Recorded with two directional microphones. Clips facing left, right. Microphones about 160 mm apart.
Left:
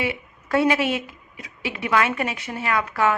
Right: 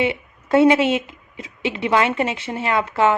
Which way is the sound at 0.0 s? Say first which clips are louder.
Right 5 dB; 25° right (ahead or behind).